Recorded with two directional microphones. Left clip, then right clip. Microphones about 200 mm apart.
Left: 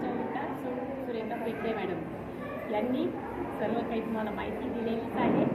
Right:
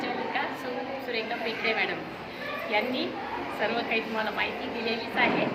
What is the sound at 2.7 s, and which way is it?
Speech, 40° right (ahead or behind).